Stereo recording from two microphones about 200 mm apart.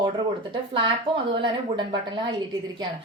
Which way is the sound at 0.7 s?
25° right (ahead or behind).